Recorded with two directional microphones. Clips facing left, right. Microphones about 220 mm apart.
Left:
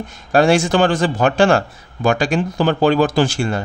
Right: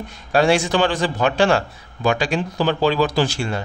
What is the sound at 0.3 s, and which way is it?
A man's voice, 45° left (ahead or behind).